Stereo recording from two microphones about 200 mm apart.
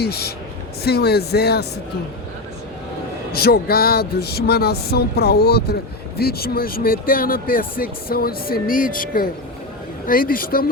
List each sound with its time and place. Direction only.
0.0 s speech: 55° left (ahead or behind)
3.3 s speech: 50° left (ahead or behind)